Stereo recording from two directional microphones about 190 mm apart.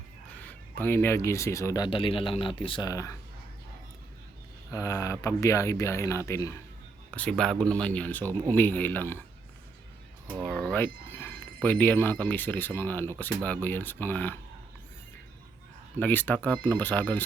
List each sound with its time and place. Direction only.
0.4 s speech: 10° left (ahead or behind)
4.7 s speech: 15° left (ahead or behind)
10.4 s speech: 5° left (ahead or behind)
16.0 s speech: 10° left (ahead or behind)